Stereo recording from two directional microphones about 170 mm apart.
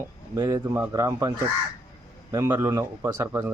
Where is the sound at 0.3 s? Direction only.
20° right (ahead or behind).